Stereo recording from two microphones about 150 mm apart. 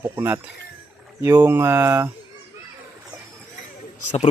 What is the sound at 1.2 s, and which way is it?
Speech, 15° right (ahead or behind).